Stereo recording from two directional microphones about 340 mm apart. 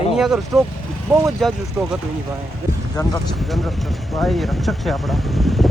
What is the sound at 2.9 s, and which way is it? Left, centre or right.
Speech, centre.